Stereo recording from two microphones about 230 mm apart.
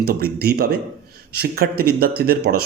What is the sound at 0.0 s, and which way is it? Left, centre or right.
Speech, right.